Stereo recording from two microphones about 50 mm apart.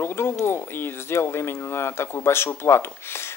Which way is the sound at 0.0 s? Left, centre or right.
Left.